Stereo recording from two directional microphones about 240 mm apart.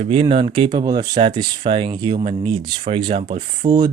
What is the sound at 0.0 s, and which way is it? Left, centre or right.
Speech, right.